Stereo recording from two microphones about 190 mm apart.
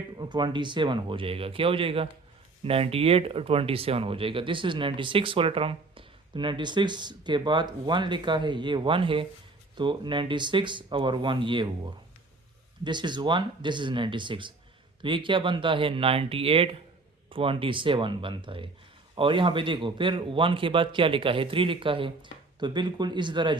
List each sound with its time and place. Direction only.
0.2 s speech: 25° right (ahead or behind)
12.8 s speech: 25° right (ahead or behind)